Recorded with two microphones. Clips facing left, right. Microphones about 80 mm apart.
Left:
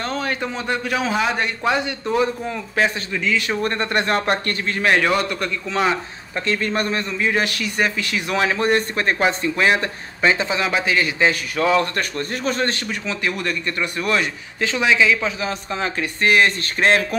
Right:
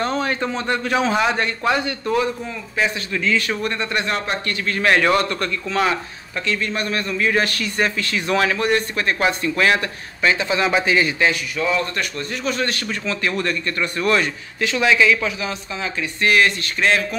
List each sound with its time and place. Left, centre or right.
0.0 s a man's voice: centre
1.6 s a man's voice: centre
2.4 s speech: left
3.1 s a man's voice: centre
3.6 s speech: left
4.6 s a man's voice: centre
6.4 s a man's voice: left
6.9 s a man's voice: centre
8.5 s speech: left
10.6 s a man's voice: centre
11.5 s a man's voice: left
12.8 s a man's voice: centre
15.7 s speech: left
16.3 s a man's voice: left